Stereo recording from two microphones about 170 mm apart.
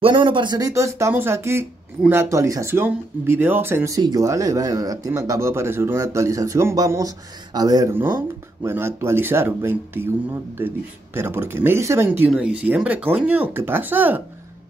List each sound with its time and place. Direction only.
0.0 s speech: 30° right (ahead or behind); by 14.2 s 10° right (ahead or behind)